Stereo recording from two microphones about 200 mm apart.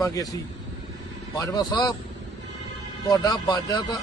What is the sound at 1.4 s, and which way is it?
Speech, 20° left (ahead or behind).